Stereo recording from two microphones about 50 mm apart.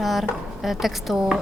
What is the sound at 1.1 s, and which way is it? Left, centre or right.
Speech, centre.